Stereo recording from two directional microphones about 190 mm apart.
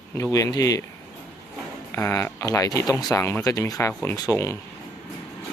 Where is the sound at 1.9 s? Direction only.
15° left (ahead or behind).